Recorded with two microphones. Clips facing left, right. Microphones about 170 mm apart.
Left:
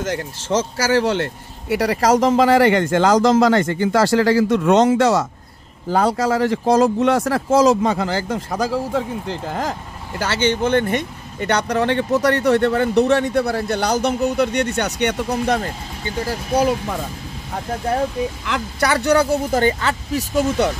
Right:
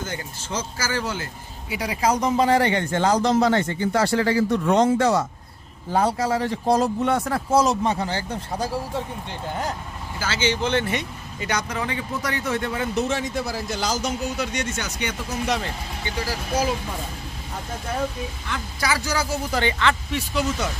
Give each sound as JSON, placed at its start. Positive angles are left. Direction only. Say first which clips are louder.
{"t": 0.0, "sound": "speech", "louder": "left 8 dB", "side_deg": 80}
{"t": 18.4, "sound": "speech", "louder": "left 7 dB", "side_deg": 80}